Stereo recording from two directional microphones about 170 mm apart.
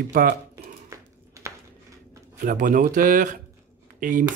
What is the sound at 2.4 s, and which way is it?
Speech, 50° right (ahead or behind).